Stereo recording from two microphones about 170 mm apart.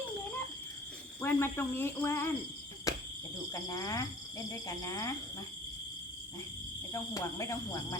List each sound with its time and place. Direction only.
1.2 s speech: 15° left (ahead or behind)
2.9 s cricket: 20° left (ahead or behind)
3.5 s speech: 20° left (ahead or behind)
6.9 s speech: 20° left (ahead or behind)